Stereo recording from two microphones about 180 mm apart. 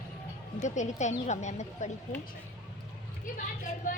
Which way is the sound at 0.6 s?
40° left (ahead or behind).